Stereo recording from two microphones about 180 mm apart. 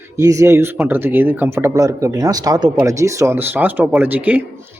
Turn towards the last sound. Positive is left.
turn(degrees=-10)  # may be behind; listen again after turning